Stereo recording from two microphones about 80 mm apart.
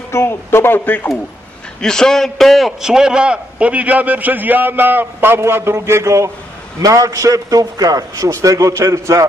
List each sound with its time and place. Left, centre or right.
0.1 s speech: left
1.8 s a man's voice: centre; by 9.2 s right